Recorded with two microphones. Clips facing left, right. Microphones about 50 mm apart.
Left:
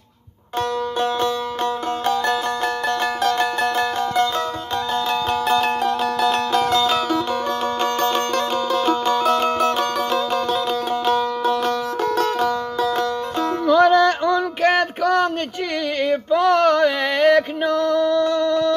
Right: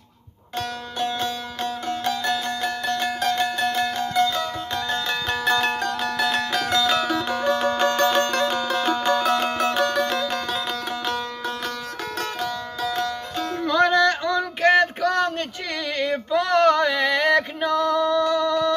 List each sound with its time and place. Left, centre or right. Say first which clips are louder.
0.6 s music: left 6 dB; left; by 7.1 s centre
7.2 s music: even; centre
8.1 s music: even; centre
8.8 s music: left 2 dB; centre
9.4 s music: left 3 dB; centre
13.7 s music: left 4 dB; centre
14.3 s a sound: left 1 dB; centre
16.0 s male singing: left 5 dB; centre